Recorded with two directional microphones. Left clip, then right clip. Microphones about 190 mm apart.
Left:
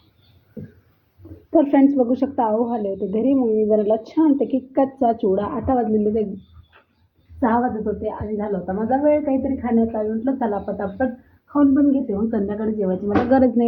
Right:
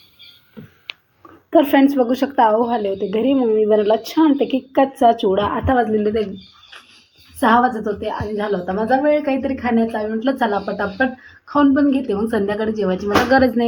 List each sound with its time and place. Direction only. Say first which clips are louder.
1.5 s a woman's voice: right 2 dB; centre (ahead or behind)
7.3 s a woman's voice: right 6 dB; 20° right (ahead or behind)
13.3 s a woman's voice: right 1 dB; centre (ahead or behind)